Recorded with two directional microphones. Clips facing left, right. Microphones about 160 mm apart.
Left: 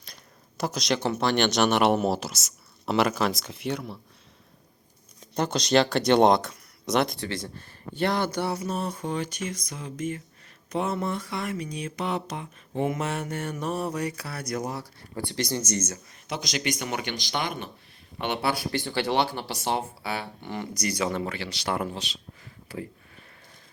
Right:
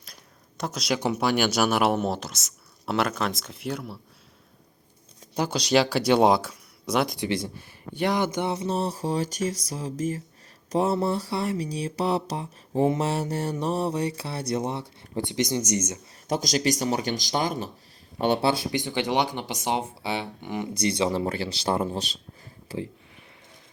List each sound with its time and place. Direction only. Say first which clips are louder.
0.0 s speech: even; centre (ahead or behind)
5.3 s speech: even; 10° right (ahead or behind); by 9.6 s 40° right (ahead or behind)
9.6 s a sound: right 3 dB; 35° right (ahead or behind); by 16.0 s 15° right (ahead or behind)
16.2 s a sound: right 6 dB; 45° right (ahead or behind)
18.7 s speech: right 1 dB; 15° right (ahead or behind)
20.7 s speech: right 4 dB; 25° right (ahead or behind)